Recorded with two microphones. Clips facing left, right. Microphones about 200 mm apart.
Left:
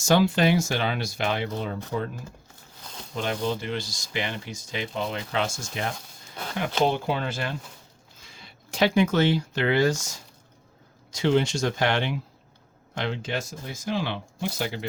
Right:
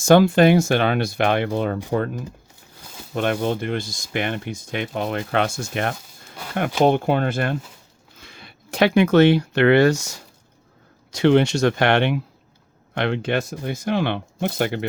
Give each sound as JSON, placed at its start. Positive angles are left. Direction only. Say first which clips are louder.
{"t": 0.0, "sound": "speech", "louder": "right 7 dB", "side_deg": -55}
{"t": 3.2, "sound": "speech", "louder": "right 6 dB", "side_deg": -60}